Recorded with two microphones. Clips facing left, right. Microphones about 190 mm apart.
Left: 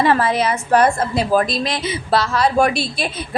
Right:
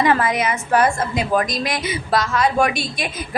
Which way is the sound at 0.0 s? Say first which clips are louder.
Left 2 dB; 30° left (ahead or behind).